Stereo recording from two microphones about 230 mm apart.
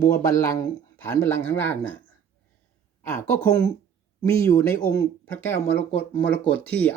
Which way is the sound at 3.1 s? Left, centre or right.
Centre.